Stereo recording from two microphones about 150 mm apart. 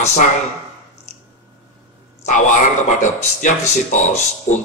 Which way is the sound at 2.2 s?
55° left (ahead or behind).